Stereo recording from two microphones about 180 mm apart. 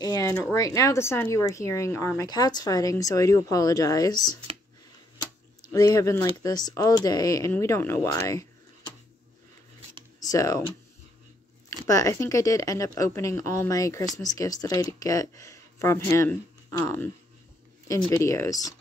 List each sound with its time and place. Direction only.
0.0 s speech: 20° left (ahead or behind)
5.2 s a sound: 20° left (ahead or behind)
6.4 s a woman's voice: 20° left (ahead or behind)
10.2 s speech: 20° left (ahead or behind)
11.9 s a woman's voice: 15° left (ahead or behind)